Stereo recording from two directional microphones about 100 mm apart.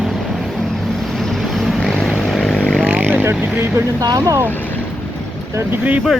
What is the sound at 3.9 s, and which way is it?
Speech, 40° right (ahead or behind).